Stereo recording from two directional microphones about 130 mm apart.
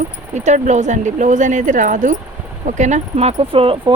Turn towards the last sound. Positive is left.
turn(degrees=-45)  # may be behind; listen again after turning